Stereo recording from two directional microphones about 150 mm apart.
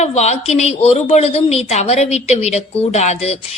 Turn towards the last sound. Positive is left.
turn(degrees=50)  # may be behind; listen again after turning